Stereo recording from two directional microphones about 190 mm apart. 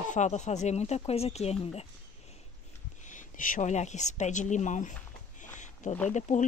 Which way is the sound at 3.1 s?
45° left (ahead or behind).